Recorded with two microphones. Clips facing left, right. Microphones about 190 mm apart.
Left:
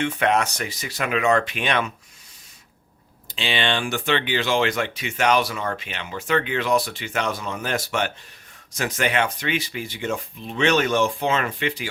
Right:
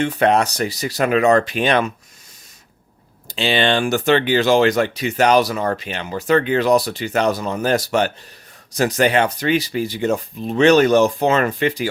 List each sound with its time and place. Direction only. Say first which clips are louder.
0.0 s speech: right 5 dB; 35° right (ahead or behind)
3.2 s speech: right 7 dB; 40° right (ahead or behind)